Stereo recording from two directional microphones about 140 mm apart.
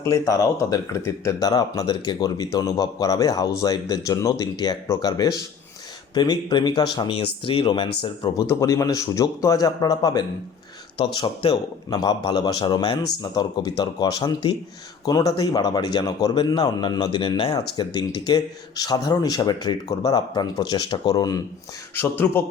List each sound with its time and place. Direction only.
0.0 s speech: 25° left (ahead or behind)
8.4 s speech: 25° left (ahead or behind)
10.9 s speech: 40° left (ahead or behind)
17.5 s speech: 30° left (ahead or behind)
22.2 s a man's voice: 15° left (ahead or behind)